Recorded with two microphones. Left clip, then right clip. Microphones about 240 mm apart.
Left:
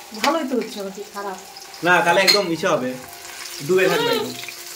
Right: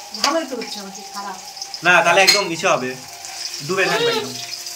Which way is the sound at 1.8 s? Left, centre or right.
Centre.